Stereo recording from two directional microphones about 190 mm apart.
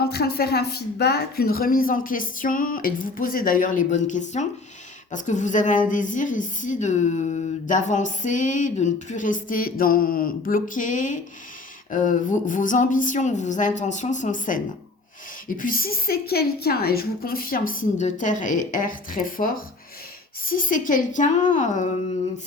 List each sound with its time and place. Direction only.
0.0 s a woman's voice: 55° left (ahead or behind)